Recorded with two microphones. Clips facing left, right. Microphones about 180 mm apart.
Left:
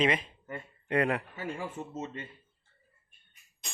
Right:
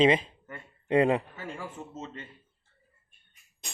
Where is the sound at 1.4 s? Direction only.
15° left (ahead or behind).